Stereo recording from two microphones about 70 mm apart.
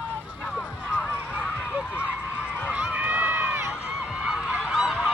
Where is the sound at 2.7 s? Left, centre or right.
Centre.